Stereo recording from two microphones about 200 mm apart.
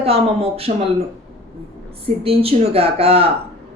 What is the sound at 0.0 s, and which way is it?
Speech, 30° right (ahead or behind).